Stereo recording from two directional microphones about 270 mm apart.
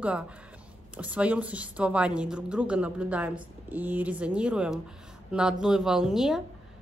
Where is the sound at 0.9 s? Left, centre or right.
Centre.